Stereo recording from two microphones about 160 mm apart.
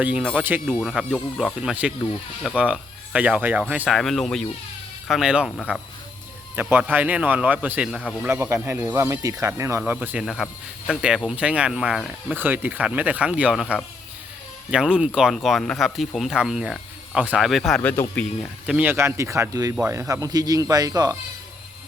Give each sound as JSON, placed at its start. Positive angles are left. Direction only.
{"t": 0.0, "sound": "speech", "side_deg": -10}
{"t": 10.2, "sound": "speech", "side_deg": 0}
{"t": 18.6, "sound": "speech", "side_deg": -10}